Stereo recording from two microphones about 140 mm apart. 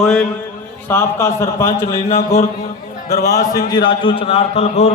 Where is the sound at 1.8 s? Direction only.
45° left (ahead or behind).